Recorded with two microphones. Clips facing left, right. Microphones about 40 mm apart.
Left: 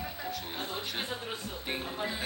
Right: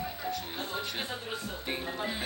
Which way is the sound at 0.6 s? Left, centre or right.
Centre.